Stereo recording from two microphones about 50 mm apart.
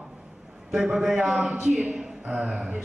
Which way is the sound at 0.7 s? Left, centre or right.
Centre.